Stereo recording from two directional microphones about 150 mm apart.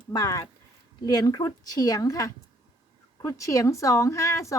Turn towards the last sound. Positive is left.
turn(degrees=20)  # may be behind; listen again after turning